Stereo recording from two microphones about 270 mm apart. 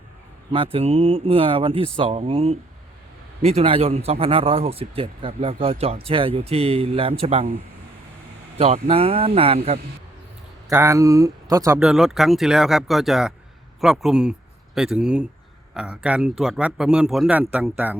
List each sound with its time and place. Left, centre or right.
0.5 s speech: centre
8.5 s speech: right
10.7 s speech: centre